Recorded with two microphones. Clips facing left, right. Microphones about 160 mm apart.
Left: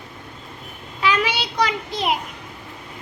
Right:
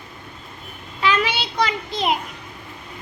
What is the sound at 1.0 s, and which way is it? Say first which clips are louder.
Child singing: even; 10° left (ahead or behind).